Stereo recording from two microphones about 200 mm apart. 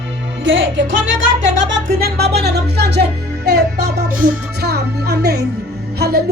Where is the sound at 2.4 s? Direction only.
55° right (ahead or behind).